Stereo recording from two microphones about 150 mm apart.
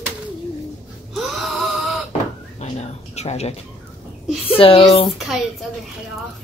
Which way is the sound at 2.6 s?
50° left (ahead or behind).